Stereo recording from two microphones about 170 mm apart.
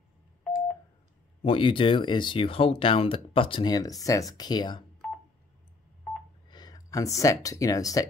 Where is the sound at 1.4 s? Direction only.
30° left (ahead or behind).